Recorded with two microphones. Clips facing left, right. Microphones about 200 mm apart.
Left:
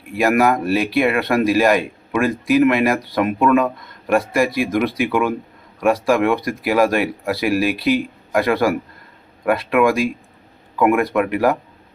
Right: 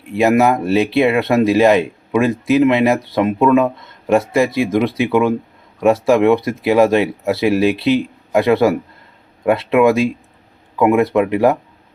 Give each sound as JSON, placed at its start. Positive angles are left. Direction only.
{"t": 0.1, "sound": "a man's voice", "side_deg": -20}